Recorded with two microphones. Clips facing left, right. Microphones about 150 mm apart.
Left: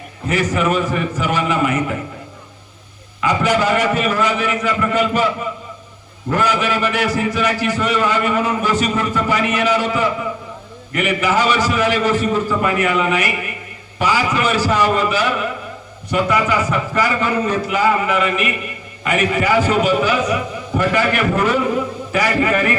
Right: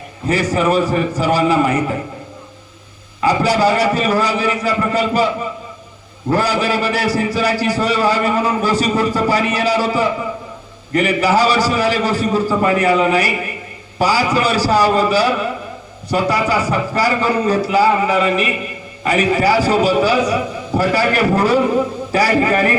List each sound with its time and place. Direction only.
0.3 s a man's voice: 35° right (ahead or behind)
3.2 s a man's voice: 35° right (ahead or behind)
6.3 s a man's voice: 35° right (ahead or behind)